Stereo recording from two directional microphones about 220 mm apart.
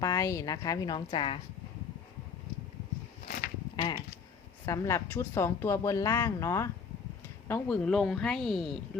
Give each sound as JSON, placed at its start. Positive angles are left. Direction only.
{"t": 0.0, "sound": "speech", "side_deg": 15}
{"t": 3.2, "sound": "a sound", "side_deg": 40}
{"t": 4.6, "sound": "speech", "side_deg": 15}